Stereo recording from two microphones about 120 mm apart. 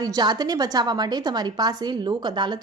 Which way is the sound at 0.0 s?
35° right (ahead or behind).